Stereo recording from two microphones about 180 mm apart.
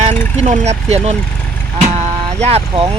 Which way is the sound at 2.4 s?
35° right (ahead or behind).